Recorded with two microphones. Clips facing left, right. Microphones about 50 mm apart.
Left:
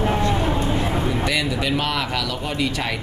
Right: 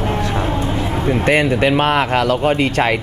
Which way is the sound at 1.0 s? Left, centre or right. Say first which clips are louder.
Right 7 dB; right.